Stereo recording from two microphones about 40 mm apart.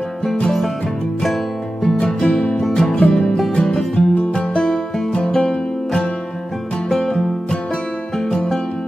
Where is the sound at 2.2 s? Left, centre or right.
Left.